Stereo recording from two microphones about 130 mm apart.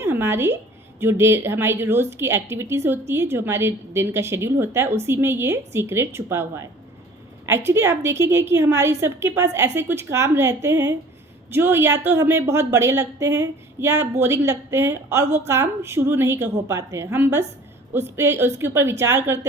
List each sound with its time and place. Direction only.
0.0 s a woman's voice: 20° right (ahead or behind)